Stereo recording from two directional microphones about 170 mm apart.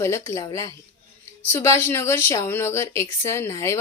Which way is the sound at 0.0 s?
15° left (ahead or behind).